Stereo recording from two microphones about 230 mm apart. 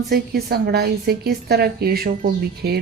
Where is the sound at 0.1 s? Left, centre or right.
Right.